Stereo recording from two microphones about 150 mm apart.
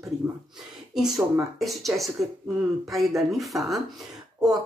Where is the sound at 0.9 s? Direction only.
5° right (ahead or behind).